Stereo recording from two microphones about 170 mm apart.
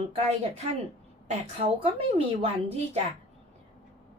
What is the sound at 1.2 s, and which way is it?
A woman's voice, 40° right (ahead or behind).